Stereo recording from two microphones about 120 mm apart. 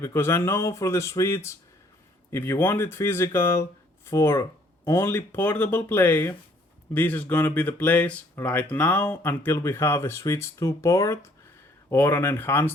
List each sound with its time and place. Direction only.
0.0 s speech: 20° left (ahead or behind)